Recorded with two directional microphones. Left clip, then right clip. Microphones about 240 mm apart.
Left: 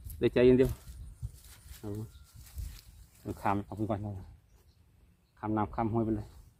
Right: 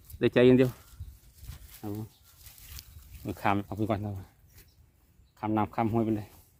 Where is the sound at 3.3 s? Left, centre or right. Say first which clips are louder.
Right 3 dB; right.